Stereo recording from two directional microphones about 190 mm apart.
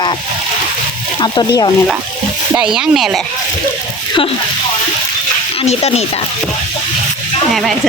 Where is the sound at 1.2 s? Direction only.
25° left (ahead or behind).